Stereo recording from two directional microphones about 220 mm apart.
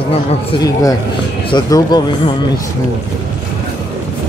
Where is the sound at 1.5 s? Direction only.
20° left (ahead or behind).